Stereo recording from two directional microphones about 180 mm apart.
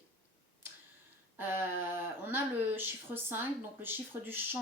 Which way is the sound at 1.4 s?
10° right (ahead or behind).